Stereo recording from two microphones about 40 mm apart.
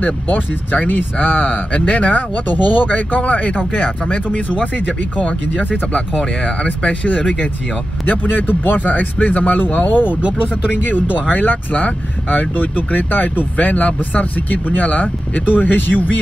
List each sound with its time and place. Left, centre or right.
0.0 s speech: left
1.7 s speech: left
2.0 s speech: left